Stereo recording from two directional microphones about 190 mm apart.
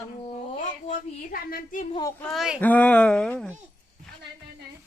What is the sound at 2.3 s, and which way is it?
Speech, centre (ahead or behind).